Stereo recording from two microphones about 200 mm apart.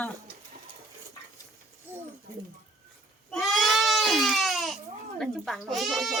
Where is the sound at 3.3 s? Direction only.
Centre (ahead or behind).